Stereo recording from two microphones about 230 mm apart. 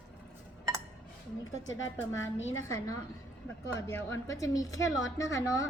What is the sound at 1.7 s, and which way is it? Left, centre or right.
A woman's voice, left.